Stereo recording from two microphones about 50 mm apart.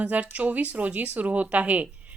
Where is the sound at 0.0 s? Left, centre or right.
Right.